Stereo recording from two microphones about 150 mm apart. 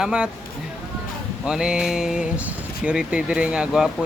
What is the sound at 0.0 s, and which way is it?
Speech, 5° right (ahead or behind).